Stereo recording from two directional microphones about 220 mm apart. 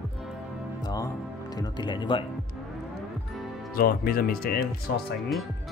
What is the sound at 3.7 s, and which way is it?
Speech, 45° left (ahead or behind).